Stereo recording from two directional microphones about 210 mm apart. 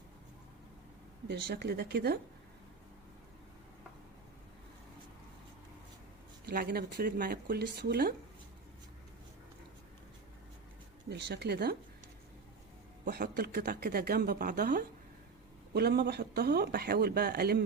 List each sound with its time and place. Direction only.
1.3 s speech: 50° right (ahead or behind)
6.4 s speech: 45° right (ahead or behind)
11.1 s speech: 55° right (ahead or behind)
13.1 s speech: 50° right (ahead or behind)